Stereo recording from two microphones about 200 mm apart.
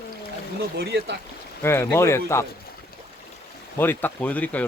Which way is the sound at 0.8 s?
55° right (ahead or behind).